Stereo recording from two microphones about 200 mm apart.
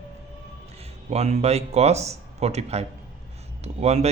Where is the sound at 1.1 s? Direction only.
35° right (ahead or behind).